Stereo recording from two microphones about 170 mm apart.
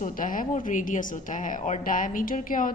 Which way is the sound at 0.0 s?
50° left (ahead or behind).